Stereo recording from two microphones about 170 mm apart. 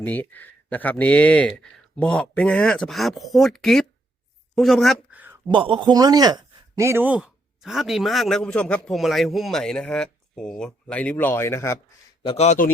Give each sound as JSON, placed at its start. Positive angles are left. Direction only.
{"t": 0.0, "sound": "a man's voice", "side_deg": 10}
{"t": 5.5, "sound": "a man's voice", "side_deg": -30}
{"t": 12.2, "sound": "speech", "side_deg": 35}